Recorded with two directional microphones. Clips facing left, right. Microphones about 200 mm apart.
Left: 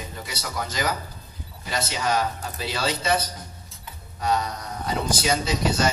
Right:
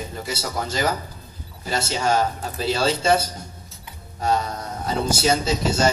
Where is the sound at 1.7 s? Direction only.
30° right (ahead or behind).